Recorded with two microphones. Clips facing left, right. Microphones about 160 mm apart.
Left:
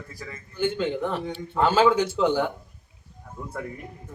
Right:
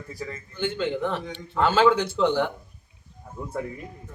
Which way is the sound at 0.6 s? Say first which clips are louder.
Left 1 dB; 5° left (ahead or behind).